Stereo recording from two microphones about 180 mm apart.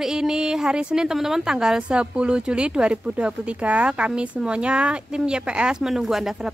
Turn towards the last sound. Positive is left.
turn(degrees=0)  # may be behind; listen again after turning